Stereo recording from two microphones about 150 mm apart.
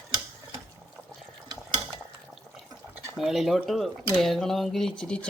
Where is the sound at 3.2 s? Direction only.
Centre (ahead or behind).